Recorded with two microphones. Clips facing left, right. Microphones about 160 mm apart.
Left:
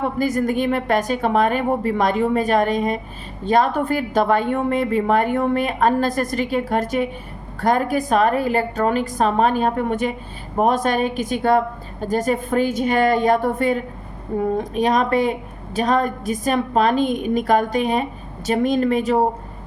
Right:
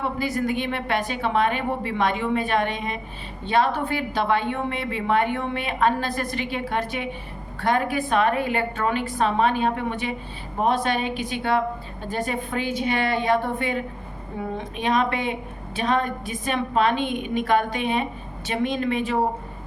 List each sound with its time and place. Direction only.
0.2 s a woman's voice: 45° left (ahead or behind)